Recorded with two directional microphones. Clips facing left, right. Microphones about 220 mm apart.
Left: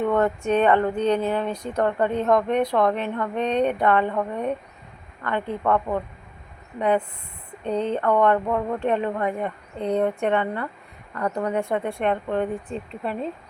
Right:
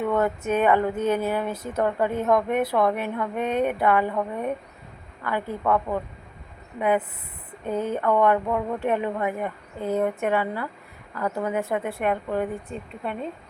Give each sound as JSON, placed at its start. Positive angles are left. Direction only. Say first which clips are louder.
{"t": 0.0, "sound": "speech", "louder": "left 2 dB", "side_deg": -5}